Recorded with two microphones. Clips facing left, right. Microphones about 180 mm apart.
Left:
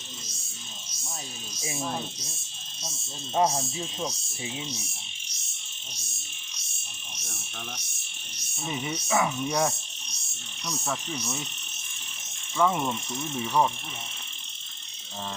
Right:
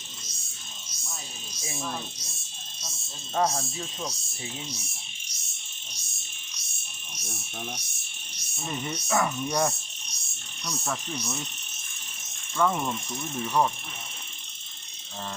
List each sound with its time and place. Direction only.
1.6 s speech: 15° left (ahead or behind)
3.3 s speech: 15° left (ahead or behind)
8.5 s speech: 5° left (ahead or behind)
12.5 s speech: 5° left (ahead or behind)